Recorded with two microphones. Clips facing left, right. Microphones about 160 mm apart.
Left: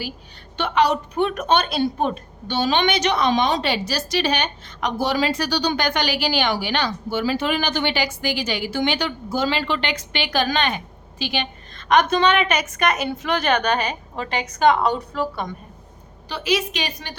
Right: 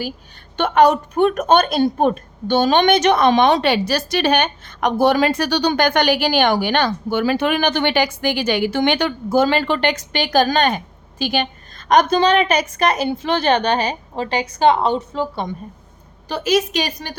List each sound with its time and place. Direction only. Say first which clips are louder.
0.5 s a woman's voice: right 6 dB; 50° right (ahead or behind); by 15.5 s 25° right (ahead or behind)
16.3 s a woman's voice: right 5 dB; 45° right (ahead or behind)